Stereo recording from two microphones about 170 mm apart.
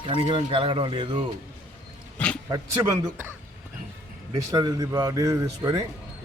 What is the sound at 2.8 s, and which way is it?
Speech, 20° right (ahead or behind).